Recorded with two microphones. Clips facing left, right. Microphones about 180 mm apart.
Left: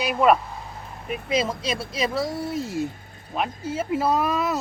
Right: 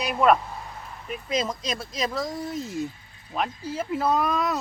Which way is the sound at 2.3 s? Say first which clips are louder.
Left 3 dB; 60° left (ahead or behind).